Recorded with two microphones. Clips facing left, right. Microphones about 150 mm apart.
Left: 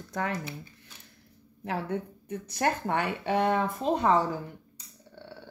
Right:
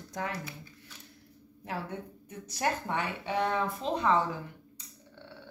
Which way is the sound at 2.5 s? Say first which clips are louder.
Left 3 dB; 60° left (ahead or behind).